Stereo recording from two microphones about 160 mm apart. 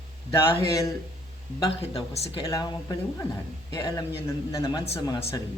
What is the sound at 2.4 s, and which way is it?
Speech, 20° left (ahead or behind).